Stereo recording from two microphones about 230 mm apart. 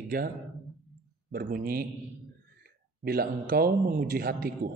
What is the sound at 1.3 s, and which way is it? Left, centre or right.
Speech, right.